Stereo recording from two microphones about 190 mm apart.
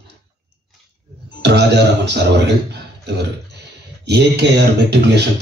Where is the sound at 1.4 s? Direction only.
65° right (ahead or behind).